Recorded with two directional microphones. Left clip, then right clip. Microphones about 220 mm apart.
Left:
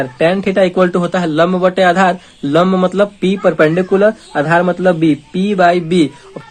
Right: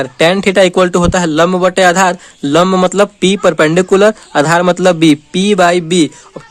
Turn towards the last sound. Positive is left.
turn(degrees=-40)  # may be behind; listen again after turning